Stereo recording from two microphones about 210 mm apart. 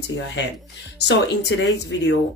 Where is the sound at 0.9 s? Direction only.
55° left (ahead or behind).